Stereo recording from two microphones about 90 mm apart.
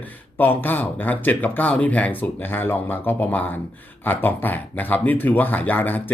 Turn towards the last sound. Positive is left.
turn(degrees=20)  # may be behind; listen again after turning